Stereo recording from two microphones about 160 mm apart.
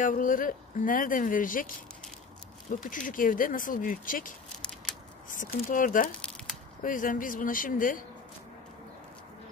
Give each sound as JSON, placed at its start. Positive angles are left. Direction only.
{"t": 0.0, "sound": "speech", "side_deg": 55}
{"t": 2.8, "sound": "speech", "side_deg": 55}
{"t": 4.6, "sound": "scissors", "side_deg": 5}
{"t": 5.3, "sound": "speech", "side_deg": 60}